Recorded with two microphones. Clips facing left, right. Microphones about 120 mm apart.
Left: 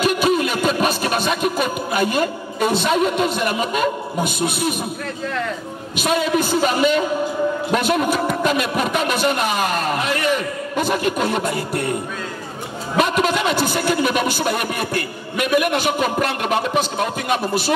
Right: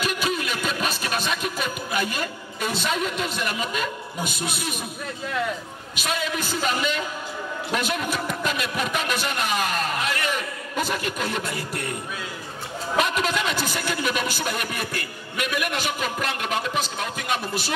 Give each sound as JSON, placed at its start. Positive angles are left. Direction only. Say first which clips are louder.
{"t": 0.0, "sound": "music", "louder": "left 9 dB", "side_deg": 55}
{"t": 5.9, "sound": "a man's voice", "louder": "left 9 dB", "side_deg": 60}
{"t": 13.1, "sound": "a man's voice", "louder": "left 6 dB", "side_deg": 55}